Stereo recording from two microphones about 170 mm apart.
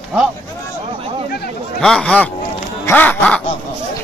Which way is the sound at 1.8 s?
5° left (ahead or behind).